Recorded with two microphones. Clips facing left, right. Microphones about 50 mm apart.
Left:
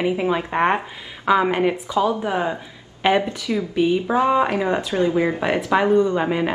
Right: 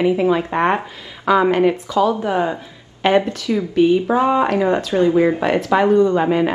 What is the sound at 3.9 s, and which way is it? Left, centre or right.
Speech, right.